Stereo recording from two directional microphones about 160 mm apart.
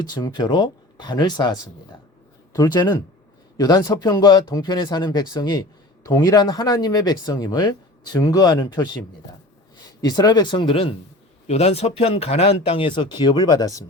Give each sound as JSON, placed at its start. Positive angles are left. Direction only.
{"t": 0.0, "sound": "speech", "side_deg": 25}
{"t": 10.0, "sound": "speech", "side_deg": 25}